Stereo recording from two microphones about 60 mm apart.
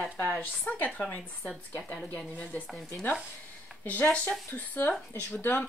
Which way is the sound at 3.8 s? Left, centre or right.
Left.